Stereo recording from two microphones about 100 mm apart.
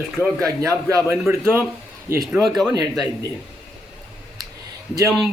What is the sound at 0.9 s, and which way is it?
A man's voice, 25° right (ahead or behind).